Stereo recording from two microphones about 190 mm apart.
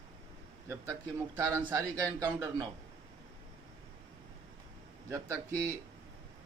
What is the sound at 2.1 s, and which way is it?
Speech, 20° right (ahead or behind).